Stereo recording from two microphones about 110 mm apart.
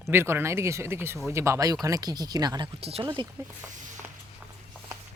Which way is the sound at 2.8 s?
65° right (ahead or behind).